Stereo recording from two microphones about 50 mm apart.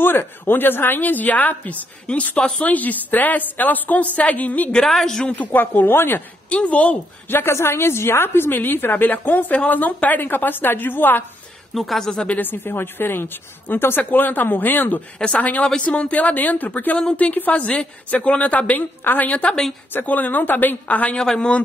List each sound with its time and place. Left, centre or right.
0.0 s a woman's voice: left
4.7 s speech: centre
5.3 s a woman's voice: left
6.5 s a woman's voice: left
7.2 s speech: left
7.5 s a woman's voice: left
11.7 s speech: centre
12.4 s a woman's voice: left
20.8 s a woman's voice: left
21.2 s speech: centre